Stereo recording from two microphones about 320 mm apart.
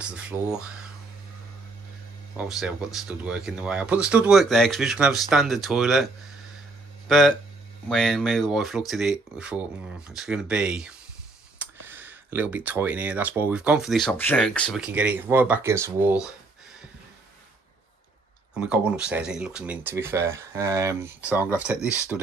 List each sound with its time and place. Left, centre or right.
0.0 s speech: centre
2.3 s speech: centre
7.1 s speech: centre
18.6 s speech: centre